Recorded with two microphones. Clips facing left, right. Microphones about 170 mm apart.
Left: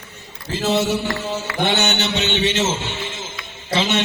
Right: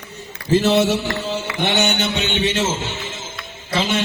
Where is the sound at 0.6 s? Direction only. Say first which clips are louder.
Even; 60° right (ahead or behind).